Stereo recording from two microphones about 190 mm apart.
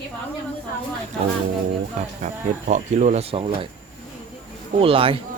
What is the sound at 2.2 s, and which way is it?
Speech, 40° right (ahead or behind).